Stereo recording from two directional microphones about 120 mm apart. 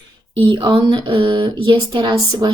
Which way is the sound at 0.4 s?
40° right (ahead or behind).